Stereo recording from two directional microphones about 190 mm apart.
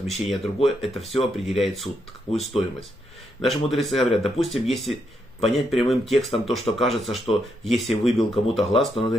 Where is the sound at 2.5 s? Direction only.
30° left (ahead or behind).